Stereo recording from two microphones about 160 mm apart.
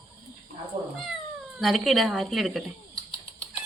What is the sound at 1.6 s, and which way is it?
Speech, centre (ahead or behind).